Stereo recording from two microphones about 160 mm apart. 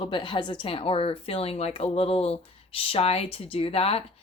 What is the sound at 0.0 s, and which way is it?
Speech, 30° left (ahead or behind).